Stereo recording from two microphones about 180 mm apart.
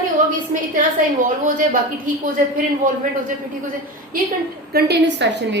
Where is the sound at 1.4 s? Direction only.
50° right (ahead or behind).